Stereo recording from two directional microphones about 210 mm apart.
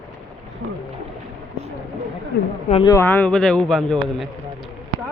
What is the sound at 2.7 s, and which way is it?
Speech, 25° left (ahead or behind).